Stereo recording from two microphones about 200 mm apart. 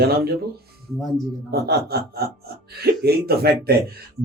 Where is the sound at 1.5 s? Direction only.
50° right (ahead or behind).